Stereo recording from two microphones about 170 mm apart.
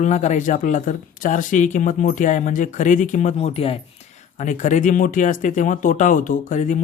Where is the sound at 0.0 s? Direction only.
45° left (ahead or behind).